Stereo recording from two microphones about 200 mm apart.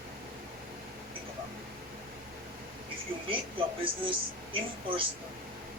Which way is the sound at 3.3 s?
25° right (ahead or behind).